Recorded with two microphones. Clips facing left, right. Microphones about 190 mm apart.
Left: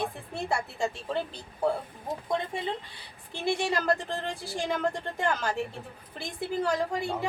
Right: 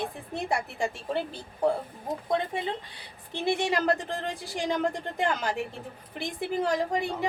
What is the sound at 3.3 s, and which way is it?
A woman's voice, 20° right (ahead or behind).